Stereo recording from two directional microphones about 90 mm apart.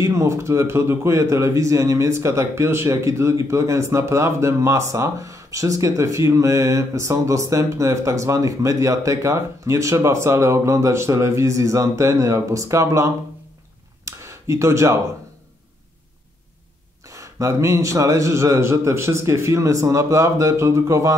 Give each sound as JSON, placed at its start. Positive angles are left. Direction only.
{"t": 0.0, "sound": "a man's voice", "side_deg": -35}
{"t": 14.0, "sound": "a sound", "side_deg": -35}
{"t": 17.1, "sound": "a man's voice", "side_deg": -35}